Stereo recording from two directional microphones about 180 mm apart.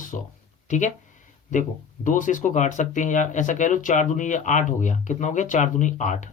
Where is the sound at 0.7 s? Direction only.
45° left (ahead or behind).